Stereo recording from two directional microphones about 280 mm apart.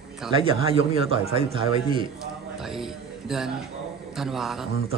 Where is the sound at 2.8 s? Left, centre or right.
Centre.